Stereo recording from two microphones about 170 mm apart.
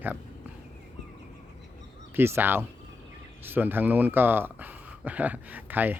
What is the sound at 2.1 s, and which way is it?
Speech, 15° right (ahead or behind).